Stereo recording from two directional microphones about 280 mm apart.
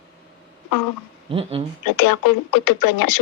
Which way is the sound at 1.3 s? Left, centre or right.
Centre.